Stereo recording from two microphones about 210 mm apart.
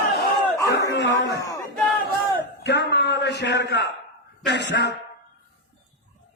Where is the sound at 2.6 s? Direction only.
55° left (ahead or behind).